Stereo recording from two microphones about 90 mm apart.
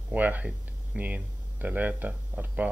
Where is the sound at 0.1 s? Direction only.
15° right (ahead or behind).